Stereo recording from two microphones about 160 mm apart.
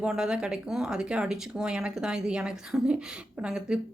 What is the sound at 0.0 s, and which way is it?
A woman's voice, 5° right (ahead or behind).